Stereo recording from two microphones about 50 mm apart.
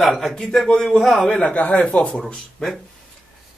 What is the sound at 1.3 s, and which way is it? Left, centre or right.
Speech, left.